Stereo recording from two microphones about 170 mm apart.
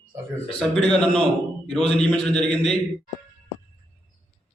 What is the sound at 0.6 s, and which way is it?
A man's voice, 5° left (ahead or behind).